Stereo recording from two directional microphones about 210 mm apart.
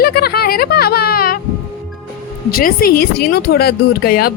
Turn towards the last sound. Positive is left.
turn(degrees=45)  # may be behind; listen again after turning